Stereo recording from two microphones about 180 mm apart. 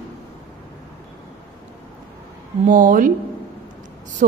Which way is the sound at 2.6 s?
50° right (ahead or behind).